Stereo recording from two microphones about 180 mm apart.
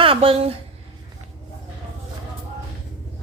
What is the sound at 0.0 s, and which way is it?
Speech, 30° right (ahead or behind).